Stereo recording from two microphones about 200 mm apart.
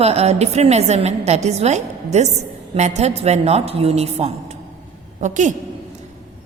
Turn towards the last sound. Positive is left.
turn(degrees=-40)  # may be behind; listen again after turning